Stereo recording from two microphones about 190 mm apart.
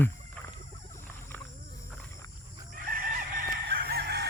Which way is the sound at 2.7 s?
50° right (ahead or behind).